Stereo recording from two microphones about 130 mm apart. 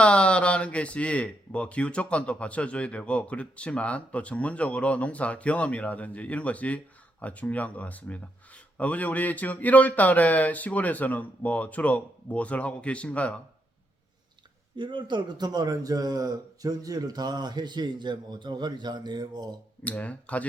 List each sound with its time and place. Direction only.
0.0 s speech: 10° left (ahead or behind)
14.8 s a man's voice: 35° right (ahead or behind)
19.8 s speech: 10° left (ahead or behind)